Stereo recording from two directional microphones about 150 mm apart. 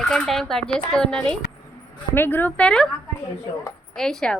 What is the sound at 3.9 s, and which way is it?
Speech, 5° left (ahead or behind).